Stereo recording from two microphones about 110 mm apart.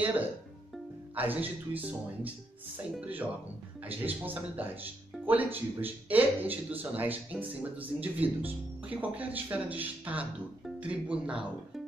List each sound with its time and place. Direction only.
1.1 s speech: 15° right (ahead or behind)